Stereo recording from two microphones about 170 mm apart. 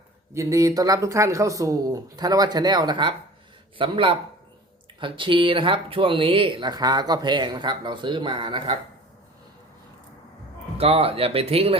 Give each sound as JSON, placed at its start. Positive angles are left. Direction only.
{"t": 0.3, "sound": "speech", "side_deg": -20}
{"t": 10.8, "sound": "speech", "side_deg": -35}